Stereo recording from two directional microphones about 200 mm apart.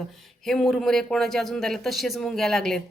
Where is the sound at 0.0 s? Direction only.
Centre (ahead or behind).